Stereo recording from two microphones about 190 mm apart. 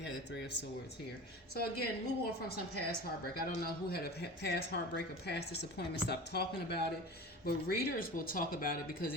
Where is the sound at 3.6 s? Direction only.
55° left (ahead or behind).